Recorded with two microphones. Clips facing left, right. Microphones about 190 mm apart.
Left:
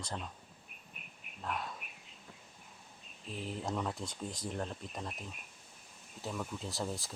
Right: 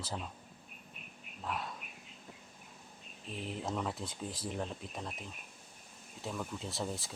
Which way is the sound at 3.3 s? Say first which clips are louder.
Even; centre (ahead or behind).